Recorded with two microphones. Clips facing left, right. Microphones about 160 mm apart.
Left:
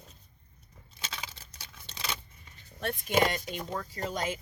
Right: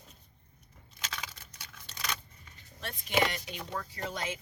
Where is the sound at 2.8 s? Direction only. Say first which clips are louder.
Left 3 dB; 50° left (ahead or behind).